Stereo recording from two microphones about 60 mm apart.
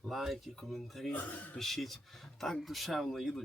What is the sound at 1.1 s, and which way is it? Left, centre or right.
Speech, left.